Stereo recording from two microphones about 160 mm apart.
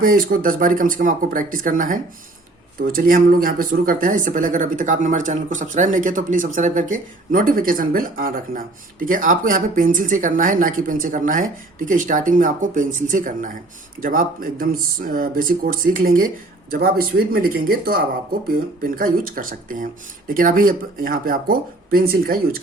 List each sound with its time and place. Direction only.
0.0 s speech: 65° right (ahead or behind)